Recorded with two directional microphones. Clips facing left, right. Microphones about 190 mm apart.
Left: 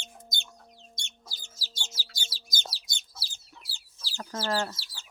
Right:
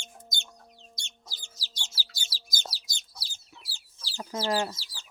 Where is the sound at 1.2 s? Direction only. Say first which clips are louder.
Even; 15° right (ahead or behind).